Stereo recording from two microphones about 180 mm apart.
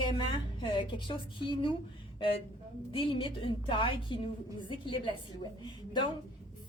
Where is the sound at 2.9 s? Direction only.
30° left (ahead or behind).